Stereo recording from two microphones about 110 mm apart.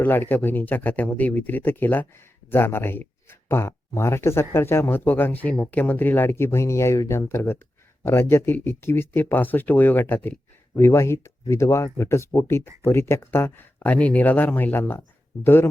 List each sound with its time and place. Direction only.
0.0 s speech: 15° left (ahead or behind)